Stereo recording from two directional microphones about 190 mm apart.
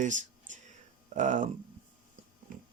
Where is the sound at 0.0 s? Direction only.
40° right (ahead or behind).